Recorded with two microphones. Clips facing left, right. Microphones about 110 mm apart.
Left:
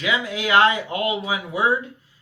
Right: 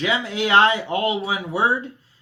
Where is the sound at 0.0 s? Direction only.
30° right (ahead or behind).